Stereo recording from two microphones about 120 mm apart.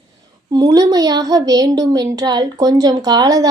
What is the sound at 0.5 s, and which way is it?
A woman's voice, 30° right (ahead or behind).